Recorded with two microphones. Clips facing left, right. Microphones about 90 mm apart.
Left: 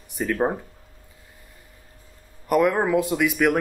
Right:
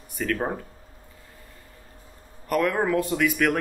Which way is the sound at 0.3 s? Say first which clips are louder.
Left 4 dB; 15° left (ahead or behind).